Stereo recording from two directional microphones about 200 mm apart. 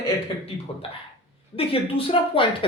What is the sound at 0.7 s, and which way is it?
Speech, 30° left (ahead or behind).